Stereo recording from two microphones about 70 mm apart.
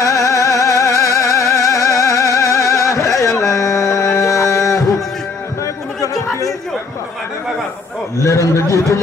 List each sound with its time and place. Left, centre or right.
0.0 s music: left
3.3 s a sound: left
8.2 s a man's voice: left